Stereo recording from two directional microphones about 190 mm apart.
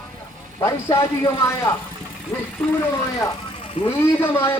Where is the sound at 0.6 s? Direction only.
15° left (ahead or behind).